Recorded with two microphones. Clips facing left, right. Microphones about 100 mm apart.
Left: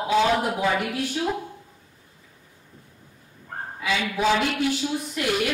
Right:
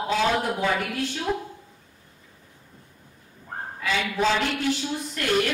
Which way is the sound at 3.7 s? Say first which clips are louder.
Even; 10° left (ahead or behind).